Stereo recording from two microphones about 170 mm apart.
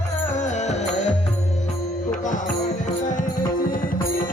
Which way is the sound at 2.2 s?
50° left (ahead or behind).